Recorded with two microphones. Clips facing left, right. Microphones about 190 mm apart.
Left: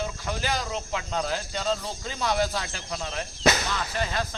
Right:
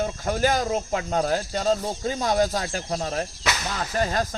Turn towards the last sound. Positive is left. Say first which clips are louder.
# right 5 dB
turn(degrees=-40)  # may be behind; listen again after turning